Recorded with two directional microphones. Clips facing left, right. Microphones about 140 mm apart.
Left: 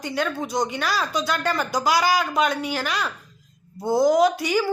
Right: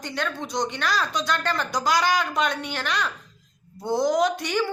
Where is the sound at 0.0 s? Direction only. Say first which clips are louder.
Left 4 dB; 5° left (ahead or behind).